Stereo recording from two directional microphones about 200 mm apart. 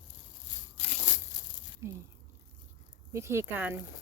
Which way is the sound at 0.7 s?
35° left (ahead or behind).